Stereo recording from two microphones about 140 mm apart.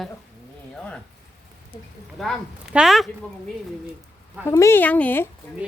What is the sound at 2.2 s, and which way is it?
Speech, centre (ahead or behind).